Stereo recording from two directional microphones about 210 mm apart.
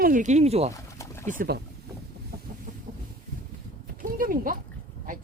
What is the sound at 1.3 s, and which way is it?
Speech, 45° right (ahead or behind).